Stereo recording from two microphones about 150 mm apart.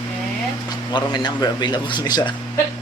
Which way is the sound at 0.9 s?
30° left (ahead or behind).